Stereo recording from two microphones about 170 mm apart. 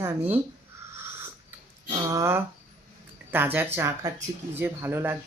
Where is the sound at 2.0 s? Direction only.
15° right (ahead or behind).